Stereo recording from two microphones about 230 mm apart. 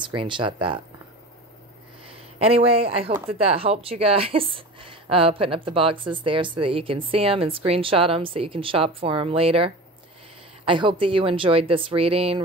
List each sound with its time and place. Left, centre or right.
0.1 s speech: right
2.3 s speech: right